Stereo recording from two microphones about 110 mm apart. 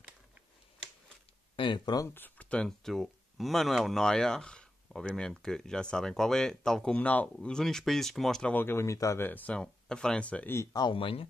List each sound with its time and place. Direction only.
1.6 s speech: 50° left (ahead or behind)
2.0 s speech: 20° left (ahead or behind)
10.5 s speech: 25° left (ahead or behind)
10.8 s speech: 50° left (ahead or behind)